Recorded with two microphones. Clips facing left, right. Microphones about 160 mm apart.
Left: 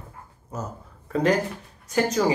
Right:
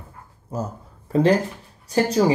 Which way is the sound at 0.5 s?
30° right (ahead or behind).